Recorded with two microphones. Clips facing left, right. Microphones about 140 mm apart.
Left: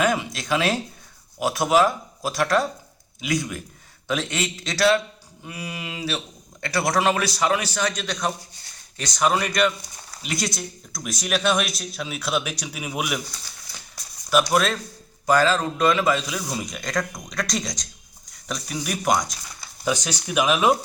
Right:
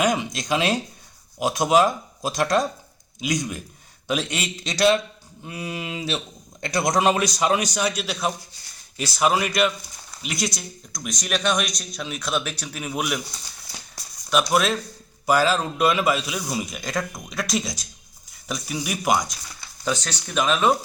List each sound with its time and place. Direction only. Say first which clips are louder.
0.0 s a man's voice: even; 15° right (ahead or behind); by 13.2 s 5° left (ahead or behind)
14.3 s speech: left 1 dB; centre (ahead or behind)
19.8 s speech: left 2 dB; 10° left (ahead or behind)